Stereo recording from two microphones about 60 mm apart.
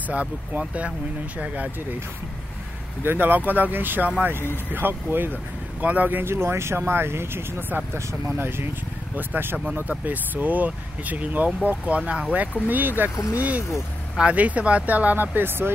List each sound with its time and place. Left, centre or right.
0.1 s speech: right
3.0 s speech: right
6.3 s speech: right
12.6 s speech: right